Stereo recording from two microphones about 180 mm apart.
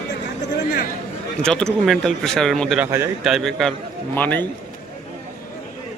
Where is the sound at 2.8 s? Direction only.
15° right (ahead or behind).